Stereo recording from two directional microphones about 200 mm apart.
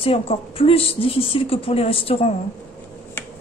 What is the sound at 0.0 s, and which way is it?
A woman's voice, 30° left (ahead or behind).